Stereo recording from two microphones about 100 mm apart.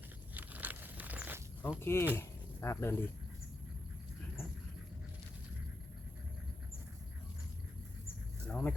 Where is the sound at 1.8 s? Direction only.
25° left (ahead or behind).